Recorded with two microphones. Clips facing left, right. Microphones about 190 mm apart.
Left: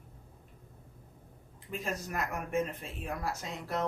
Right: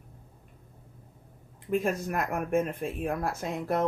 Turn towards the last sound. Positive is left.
turn(degrees=-55)  # may be behind; listen again after turning